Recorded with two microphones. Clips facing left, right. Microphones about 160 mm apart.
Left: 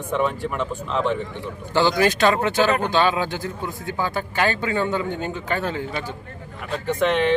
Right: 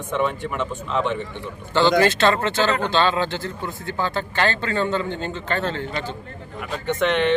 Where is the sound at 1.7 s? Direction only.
15° left (ahead or behind).